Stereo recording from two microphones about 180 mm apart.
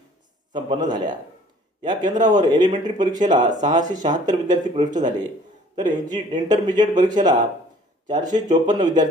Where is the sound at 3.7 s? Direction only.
45° right (ahead or behind).